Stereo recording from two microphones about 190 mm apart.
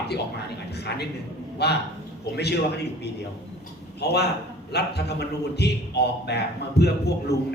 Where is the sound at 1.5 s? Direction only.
60° left (ahead or behind).